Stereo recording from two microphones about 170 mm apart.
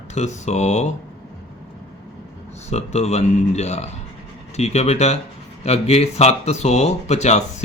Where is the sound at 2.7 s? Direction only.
40° left (ahead or behind).